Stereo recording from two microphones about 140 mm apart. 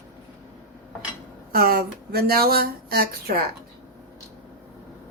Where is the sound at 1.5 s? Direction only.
90° right.